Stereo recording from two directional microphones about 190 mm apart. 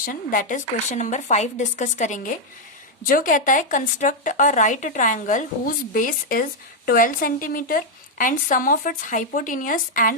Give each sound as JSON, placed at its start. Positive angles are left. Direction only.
{"t": 0.0, "sound": "a woman's voice", "side_deg": 45}